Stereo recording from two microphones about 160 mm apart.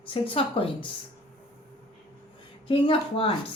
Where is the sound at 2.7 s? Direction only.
35° left (ahead or behind).